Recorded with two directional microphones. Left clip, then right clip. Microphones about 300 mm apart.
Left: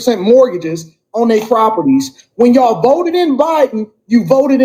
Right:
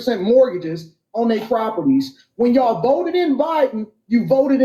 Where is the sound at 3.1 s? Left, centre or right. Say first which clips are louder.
Left 6 dB; left.